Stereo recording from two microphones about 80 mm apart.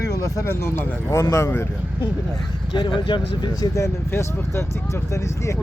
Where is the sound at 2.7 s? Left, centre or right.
Left.